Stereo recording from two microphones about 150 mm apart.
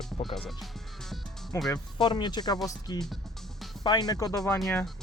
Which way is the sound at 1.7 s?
30° left (ahead or behind).